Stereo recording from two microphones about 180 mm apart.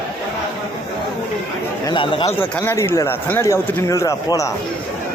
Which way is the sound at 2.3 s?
10° left (ahead or behind).